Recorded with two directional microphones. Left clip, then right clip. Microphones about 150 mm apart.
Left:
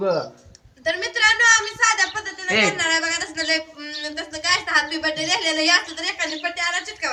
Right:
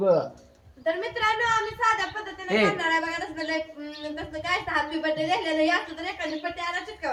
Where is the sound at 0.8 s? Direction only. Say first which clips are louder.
Left 6 dB; 30° right (ahead or behind).